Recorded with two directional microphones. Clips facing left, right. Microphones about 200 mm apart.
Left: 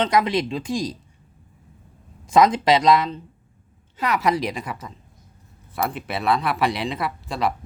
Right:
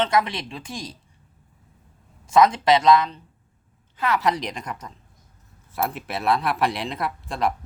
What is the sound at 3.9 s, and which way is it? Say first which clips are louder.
A woman's voice: left 1 dB; 15° left (ahead or behind).